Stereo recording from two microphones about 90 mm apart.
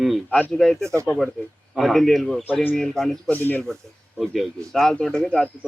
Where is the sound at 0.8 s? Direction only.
35° right (ahead or behind).